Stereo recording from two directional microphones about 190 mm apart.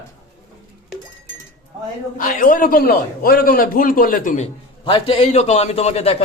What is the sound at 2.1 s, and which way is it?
A man's voice, 45° left (ahead or behind).